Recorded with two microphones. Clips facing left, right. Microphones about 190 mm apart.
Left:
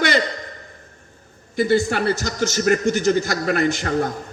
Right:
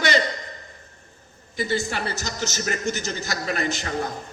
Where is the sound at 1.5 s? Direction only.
55° left (ahead or behind).